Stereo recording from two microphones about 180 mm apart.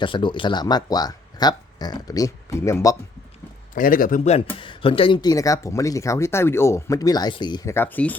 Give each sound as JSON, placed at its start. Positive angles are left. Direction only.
{"t": 0.0, "sound": "speech", "side_deg": 25}
{"t": 3.8, "sound": "speech", "side_deg": 50}
{"t": 4.5, "sound": "speech", "side_deg": 30}